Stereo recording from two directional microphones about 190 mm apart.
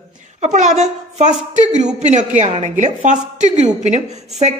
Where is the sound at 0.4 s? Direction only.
40° right (ahead or behind).